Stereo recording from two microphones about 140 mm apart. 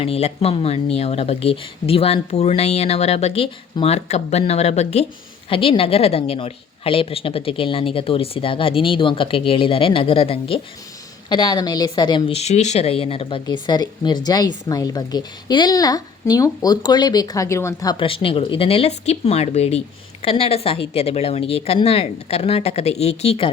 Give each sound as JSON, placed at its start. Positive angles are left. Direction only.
{"t": 0.0, "sound": "speech", "side_deg": 45}
{"t": 11.3, "sound": "a woman's voice", "side_deg": 30}
{"t": 12.3, "sound": "a woman's voice", "side_deg": 50}
{"t": 17.9, "sound": "speech", "side_deg": 40}